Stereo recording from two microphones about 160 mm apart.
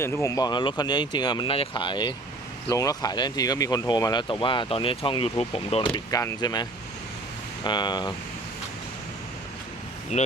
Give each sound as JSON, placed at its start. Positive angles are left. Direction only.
{"t": 0.0, "sound": "speech", "side_deg": 15}
{"t": 10.1, "sound": "speech", "side_deg": 45}